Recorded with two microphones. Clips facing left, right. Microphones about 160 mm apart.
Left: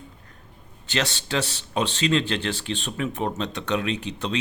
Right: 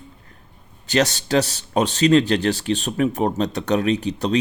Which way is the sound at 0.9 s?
40° right (ahead or behind).